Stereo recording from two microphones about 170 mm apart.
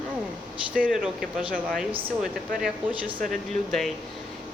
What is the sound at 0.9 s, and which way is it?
Speech, centre (ahead or behind).